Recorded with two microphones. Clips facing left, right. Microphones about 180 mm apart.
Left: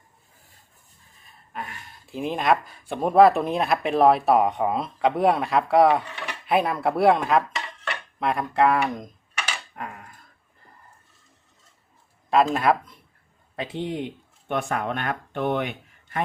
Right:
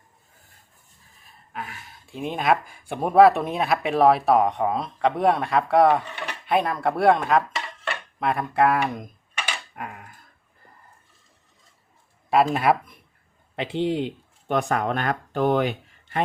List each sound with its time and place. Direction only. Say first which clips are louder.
1.5 s speech: even; centre (ahead or behind)
12.3 s speech: even; 10° right (ahead or behind)
13.6 s a man's voice: right 5 dB; 25° right (ahead or behind)